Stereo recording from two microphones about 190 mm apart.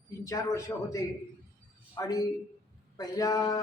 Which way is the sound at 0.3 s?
15° left (ahead or behind).